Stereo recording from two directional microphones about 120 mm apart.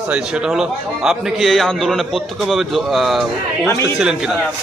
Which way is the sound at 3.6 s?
20° left (ahead or behind).